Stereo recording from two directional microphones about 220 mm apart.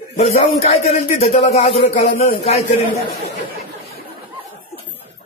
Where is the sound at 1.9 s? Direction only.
40° left (ahead or behind).